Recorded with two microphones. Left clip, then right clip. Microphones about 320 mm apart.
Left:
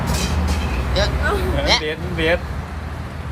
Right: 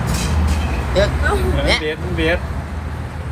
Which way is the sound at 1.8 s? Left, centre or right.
Left.